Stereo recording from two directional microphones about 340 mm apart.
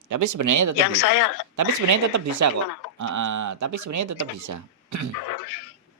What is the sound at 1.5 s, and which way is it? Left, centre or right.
Speech, right.